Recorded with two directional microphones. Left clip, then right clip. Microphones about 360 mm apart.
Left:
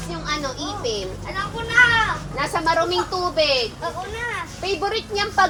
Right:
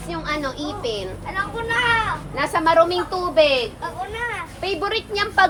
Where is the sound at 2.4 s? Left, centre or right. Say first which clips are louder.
Right 4 dB; right.